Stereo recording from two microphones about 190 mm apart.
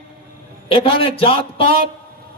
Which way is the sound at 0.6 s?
30° left (ahead or behind).